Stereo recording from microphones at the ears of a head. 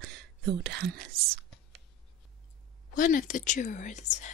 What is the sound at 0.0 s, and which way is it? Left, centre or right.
Whispering, right.